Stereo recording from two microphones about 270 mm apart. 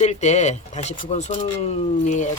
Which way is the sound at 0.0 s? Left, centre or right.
Left.